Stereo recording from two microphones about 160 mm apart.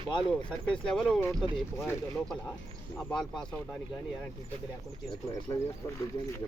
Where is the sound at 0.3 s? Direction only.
5° left (ahead or behind).